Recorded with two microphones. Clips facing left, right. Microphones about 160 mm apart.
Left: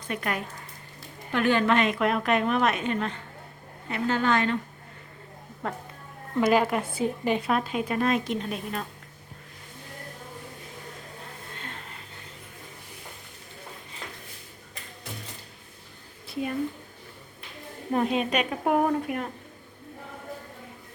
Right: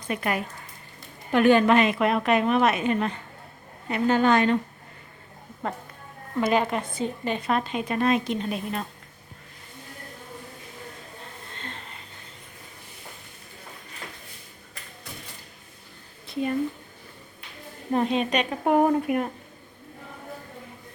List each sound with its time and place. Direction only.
0.1 s a woman's voice: 5° right (ahead or behind)
5.6 s a woman's voice: centre (ahead or behind)
11.5 s music: 5° left (ahead or behind)
16.2 s a sound: 5° left (ahead or behind)
17.9 s a woman's voice: 5° left (ahead or behind)
18.9 s a woman's voice: 10° right (ahead or behind)